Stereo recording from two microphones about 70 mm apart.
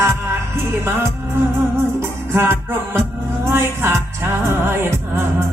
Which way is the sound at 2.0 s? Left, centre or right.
Right.